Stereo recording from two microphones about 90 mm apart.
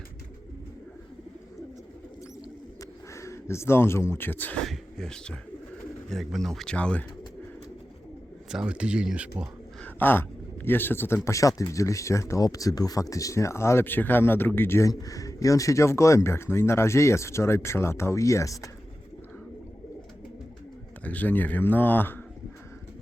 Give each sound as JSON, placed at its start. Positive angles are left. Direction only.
{"t": 3.1, "sound": "speech", "side_deg": 35}
{"t": 4.6, "sound": "speech", "side_deg": 5}
{"t": 6.7, "sound": "speech", "side_deg": 15}
{"t": 8.4, "sound": "speech", "side_deg": -10}
{"t": 9.8, "sound": "a man's voice", "side_deg": 20}
{"t": 11.3, "sound": "speech", "side_deg": 40}
{"t": 14.8, "sound": "speech", "side_deg": 40}
{"t": 21.0, "sound": "speech", "side_deg": 15}